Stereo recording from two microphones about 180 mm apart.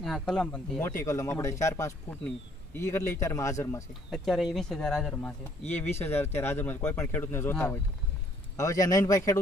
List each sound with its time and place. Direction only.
0.0 s speech: centre (ahead or behind)
4.1 s speech: centre (ahead or behind); by 9.4 s 20° left (ahead or behind)